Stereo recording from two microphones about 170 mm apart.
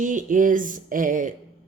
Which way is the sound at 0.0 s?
50° right (ahead or behind).